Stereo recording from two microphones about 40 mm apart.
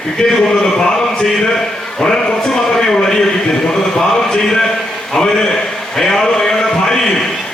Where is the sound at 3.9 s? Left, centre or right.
Centre.